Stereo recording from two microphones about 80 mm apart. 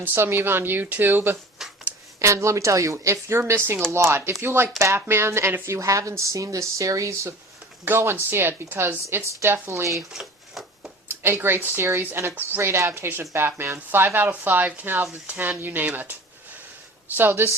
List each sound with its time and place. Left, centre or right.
0.0 s speech: right
2.1 s a woman's voice: right
7.9 s a woman's voice: right
10.1 s a sound: centre
11.1 s a woman's voice: right
17.2 s speech: right